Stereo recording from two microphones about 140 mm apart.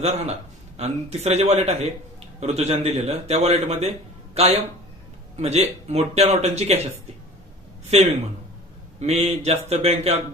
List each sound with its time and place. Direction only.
0.0 s a man's voice: 50° right (ahead or behind)
5.4 s a man's voice: 50° right (ahead or behind)
7.9 s a man's voice: 45° right (ahead or behind)